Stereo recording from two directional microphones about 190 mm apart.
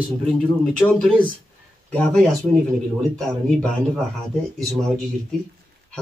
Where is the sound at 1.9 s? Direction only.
5° left (ahead or behind).